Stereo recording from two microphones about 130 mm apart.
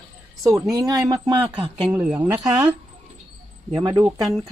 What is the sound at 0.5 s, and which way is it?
Speech, 25° right (ahead or behind).